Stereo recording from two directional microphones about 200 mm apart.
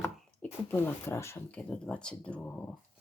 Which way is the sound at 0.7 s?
10° left (ahead or behind).